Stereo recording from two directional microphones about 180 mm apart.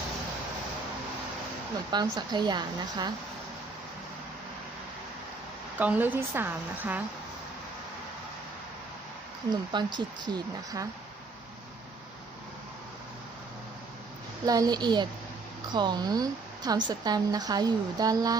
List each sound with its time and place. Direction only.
1.9 s a woman's voice: 25° right (ahead or behind)
5.8 s a woman's voice: 10° right (ahead or behind)
9.5 s a woman's voice: 25° right (ahead or behind)
14.4 s a woman's voice: 20° right (ahead or behind)